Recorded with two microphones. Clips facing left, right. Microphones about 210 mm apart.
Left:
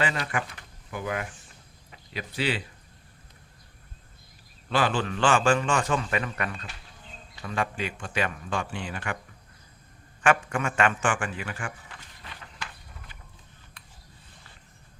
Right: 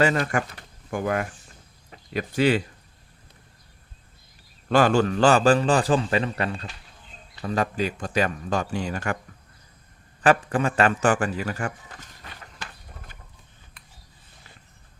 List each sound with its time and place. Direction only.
0.0 s speech: 45° right (ahead or behind)
4.7 s a man's voice: 45° right (ahead or behind)
10.2 s a man's voice: 35° right (ahead or behind)